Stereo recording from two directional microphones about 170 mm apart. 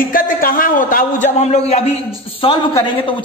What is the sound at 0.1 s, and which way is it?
A man's voice, 55° left (ahead or behind).